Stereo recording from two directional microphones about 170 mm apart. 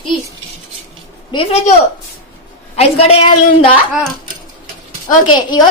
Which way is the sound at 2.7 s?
35° left (ahead or behind).